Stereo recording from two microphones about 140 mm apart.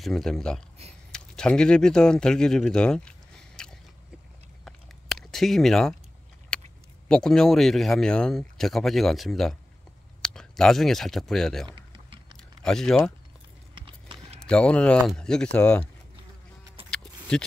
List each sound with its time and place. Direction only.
0.0 s speech: 5° left (ahead or behind)
4.6 s a sound: centre (ahead or behind)
6.5 s vehicle: 5° left (ahead or behind)
7.1 s speech: 5° left (ahead or behind)
11.7 s typing: 35° right (ahead or behind)
12.6 s speech: 5° left (ahead or behind)
13.7 s a sound: 40° right (ahead or behind)
14.4 s speech: 5° left (ahead or behind)